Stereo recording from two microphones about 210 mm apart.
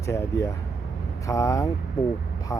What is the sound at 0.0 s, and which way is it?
Speech, 15° left (ahead or behind).